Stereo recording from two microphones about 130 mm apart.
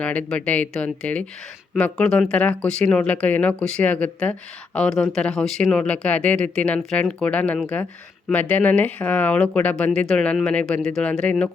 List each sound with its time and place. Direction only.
0.0 s speech: 10° left (ahead or behind)